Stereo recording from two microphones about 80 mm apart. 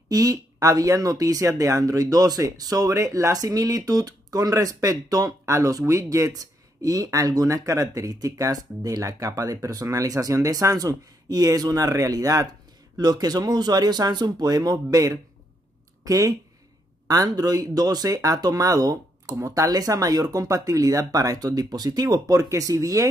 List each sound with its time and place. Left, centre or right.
0.1 s speech: right